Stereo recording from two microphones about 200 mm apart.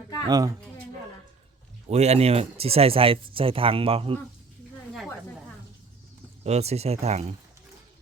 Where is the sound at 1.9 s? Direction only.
30° right (ahead or behind).